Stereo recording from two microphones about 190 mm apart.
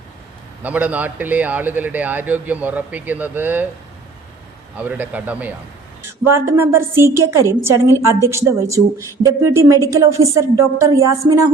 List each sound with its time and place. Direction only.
0.6 s a man's voice: 10° right (ahead or behind)
4.8 s a man's voice: 10° right (ahead or behind)